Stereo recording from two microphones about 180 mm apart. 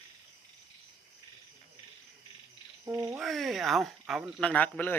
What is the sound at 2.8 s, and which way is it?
Frog, 15° right (ahead or behind).